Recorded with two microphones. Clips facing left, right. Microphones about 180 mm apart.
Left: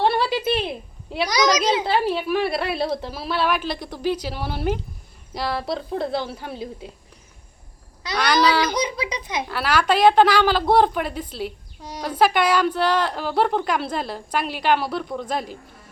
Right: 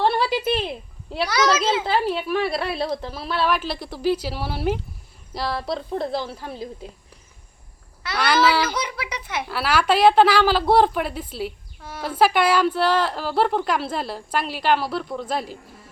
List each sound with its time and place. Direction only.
0.0 s a sound: centre (ahead or behind)
1.3 s a child's voice: 15° left (ahead or behind)
1.8 s a woman's voice: centre (ahead or behind)
8.1 s a woman's voice: 5° right (ahead or behind)
8.8 s a child's voice: 20° left (ahead or behind)
9.5 s a woman's voice: 5° right (ahead or behind)
11.8 s a child's voice: 15° left (ahead or behind)
12.0 s a woman's voice: 5° right (ahead or behind)